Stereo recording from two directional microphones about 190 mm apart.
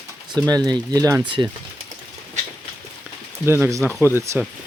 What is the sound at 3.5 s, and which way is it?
Speech, 15° right (ahead or behind).